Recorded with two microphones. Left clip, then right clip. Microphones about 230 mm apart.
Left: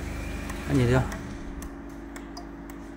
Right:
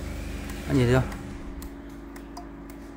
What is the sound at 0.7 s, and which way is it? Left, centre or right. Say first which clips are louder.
Speech: right 2 dB; centre.